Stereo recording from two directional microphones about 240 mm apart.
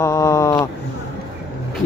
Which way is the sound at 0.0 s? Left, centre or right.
Centre.